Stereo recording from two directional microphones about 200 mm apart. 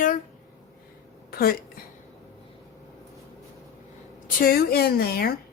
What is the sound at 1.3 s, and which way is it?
Speech, 50° left (ahead or behind).